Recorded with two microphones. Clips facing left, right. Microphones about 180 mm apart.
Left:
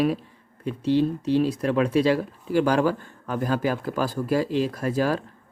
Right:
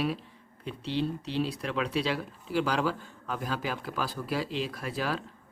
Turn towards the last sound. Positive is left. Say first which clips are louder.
# left 9 dB
turn(degrees=45)  # may be behind; listen again after turning